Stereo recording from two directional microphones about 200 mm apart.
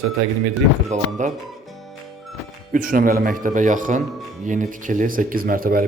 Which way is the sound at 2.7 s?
45° right (ahead or behind).